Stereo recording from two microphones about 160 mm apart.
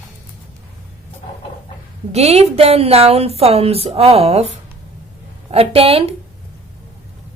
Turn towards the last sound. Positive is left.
turn(degrees=-35)  # may be behind; listen again after turning